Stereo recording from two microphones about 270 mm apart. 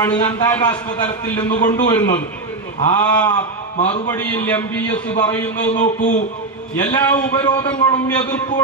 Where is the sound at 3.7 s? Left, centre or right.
Left.